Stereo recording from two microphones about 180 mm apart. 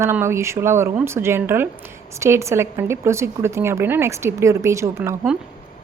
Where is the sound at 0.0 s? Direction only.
15° right (ahead or behind).